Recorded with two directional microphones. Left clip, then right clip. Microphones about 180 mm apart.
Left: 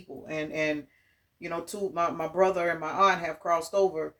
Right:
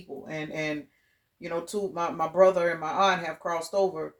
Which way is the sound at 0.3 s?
30° right (ahead or behind).